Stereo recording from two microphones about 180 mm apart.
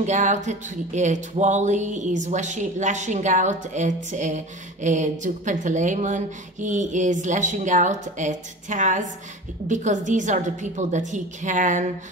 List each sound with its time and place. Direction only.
0.0 s music: 40° right (ahead or behind)